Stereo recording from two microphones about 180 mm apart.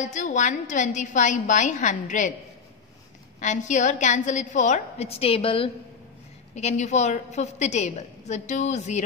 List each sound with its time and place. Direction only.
0.0 s a woman's voice: 45° left (ahead or behind)
3.3 s a woman's voice: 40° left (ahead or behind)